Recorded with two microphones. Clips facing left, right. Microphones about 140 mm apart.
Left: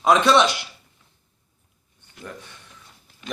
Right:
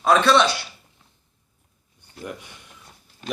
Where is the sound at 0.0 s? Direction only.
20° left (ahead or behind).